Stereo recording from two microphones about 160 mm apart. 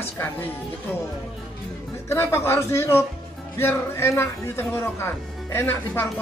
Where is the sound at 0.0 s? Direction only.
15° left (ahead or behind).